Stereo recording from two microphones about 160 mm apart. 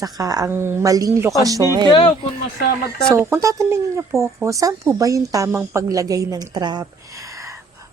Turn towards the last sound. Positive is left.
turn(degrees=-20)  # may be behind; listen again after turning